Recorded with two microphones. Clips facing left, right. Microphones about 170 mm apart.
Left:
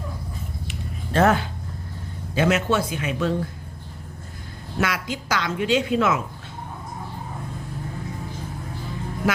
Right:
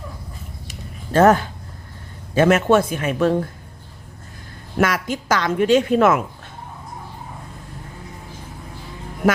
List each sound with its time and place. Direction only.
0.7 s a sound: 45° right (ahead or behind)
2.3 s a woman's voice: 50° right (ahead or behind)
4.8 s a woman's voice: 50° right (ahead or behind)